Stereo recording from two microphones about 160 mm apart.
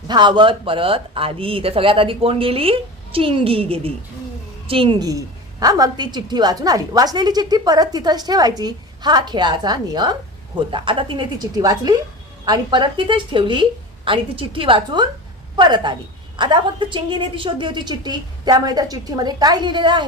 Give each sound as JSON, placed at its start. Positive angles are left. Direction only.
{"t": 0.1, "sound": "a woman's voice", "side_deg": -30}